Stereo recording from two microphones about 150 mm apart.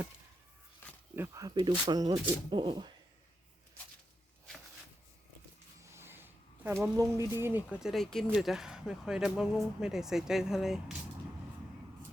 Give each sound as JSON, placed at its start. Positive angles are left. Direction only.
{"t": 1.1, "sound": "speech", "side_deg": -20}
{"t": 5.8, "sound": "a sound", "side_deg": -15}
{"t": 7.8, "sound": "speech", "side_deg": 0}